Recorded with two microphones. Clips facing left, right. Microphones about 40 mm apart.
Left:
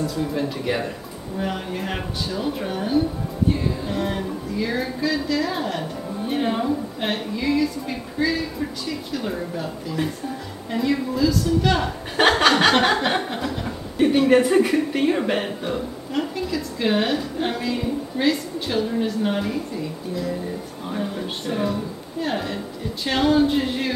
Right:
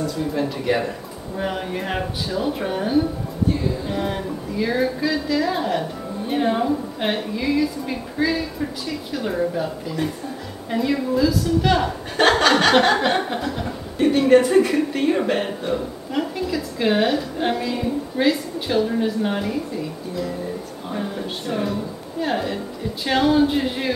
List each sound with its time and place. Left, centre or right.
0.0 s a woman's voice: centre
10.7 s a woman's voice: centre
12.2 s chuckle: centre
12.9 s a woman's voice: centre
20.9 s a woman's voice: centre